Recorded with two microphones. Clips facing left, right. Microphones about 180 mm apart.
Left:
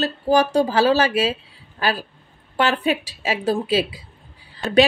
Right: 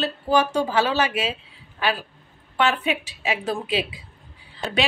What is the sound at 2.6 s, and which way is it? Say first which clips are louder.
Speech: left 2 dB; 40° left (ahead or behind).